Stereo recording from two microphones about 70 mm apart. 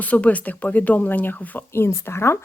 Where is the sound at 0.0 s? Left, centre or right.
Left.